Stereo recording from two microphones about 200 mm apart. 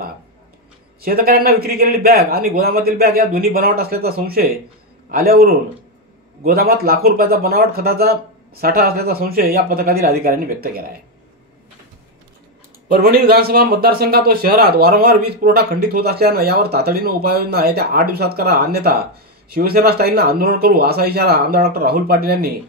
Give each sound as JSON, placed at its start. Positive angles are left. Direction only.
{"t": 1.0, "sound": "speech", "side_deg": -50}
{"t": 12.8, "sound": "speech", "side_deg": -50}